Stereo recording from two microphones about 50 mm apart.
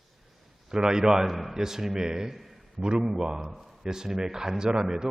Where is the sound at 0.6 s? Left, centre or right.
Centre.